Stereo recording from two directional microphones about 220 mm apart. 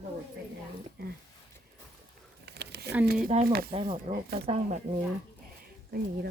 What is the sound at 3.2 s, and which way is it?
Speech, 40° right (ahead or behind).